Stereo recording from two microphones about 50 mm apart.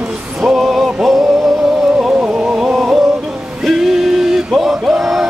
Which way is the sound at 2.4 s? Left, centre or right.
Centre.